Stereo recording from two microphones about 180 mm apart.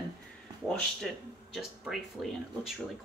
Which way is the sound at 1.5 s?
5° right (ahead or behind).